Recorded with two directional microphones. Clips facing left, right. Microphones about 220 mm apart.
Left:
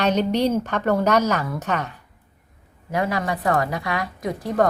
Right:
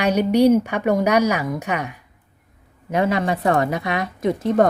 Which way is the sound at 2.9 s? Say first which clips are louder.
Right 4 dB; 25° right (ahead or behind).